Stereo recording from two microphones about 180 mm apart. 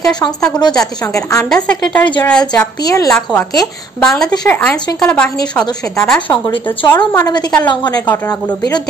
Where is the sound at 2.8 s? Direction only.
20° left (ahead or behind).